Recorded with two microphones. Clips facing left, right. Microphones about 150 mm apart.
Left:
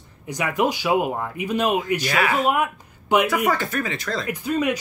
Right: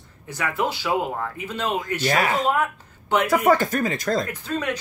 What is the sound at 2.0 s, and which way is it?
Speech, 40° right (ahead or behind).